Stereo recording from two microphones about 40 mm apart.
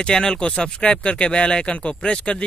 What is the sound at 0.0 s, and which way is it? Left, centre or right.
Speech, centre.